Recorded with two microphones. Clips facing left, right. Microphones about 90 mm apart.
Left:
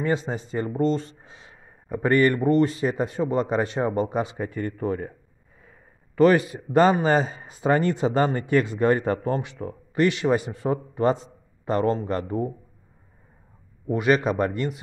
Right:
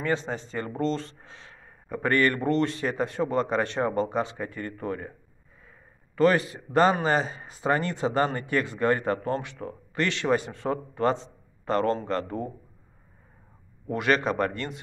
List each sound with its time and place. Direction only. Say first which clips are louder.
0.0 s speech: left 3 dB; 15° left (ahead or behind)
6.1 s a man's voice: left 4 dB; 20° left (ahead or behind)
13.8 s speech: left 3 dB; 10° left (ahead or behind)